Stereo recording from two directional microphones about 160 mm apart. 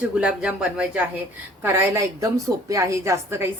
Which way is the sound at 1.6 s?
15° right (ahead or behind).